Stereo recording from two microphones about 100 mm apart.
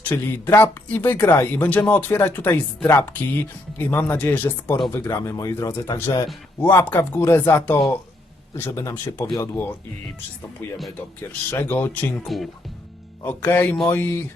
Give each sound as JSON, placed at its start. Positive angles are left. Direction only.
{"t": 0.0, "sound": "speech", "side_deg": 20}
{"t": 6.6, "sound": "speech", "side_deg": 20}
{"t": 11.5, "sound": "speech", "side_deg": 20}
{"t": 12.2, "sound": "speech", "side_deg": 0}
{"t": 13.2, "sound": "speech", "side_deg": 20}